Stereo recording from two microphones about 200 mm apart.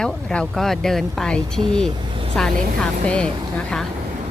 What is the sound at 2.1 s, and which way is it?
Speech, 25° right (ahead or behind).